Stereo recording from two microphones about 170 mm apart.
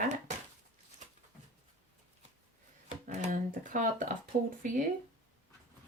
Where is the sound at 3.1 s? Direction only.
50° right (ahead or behind).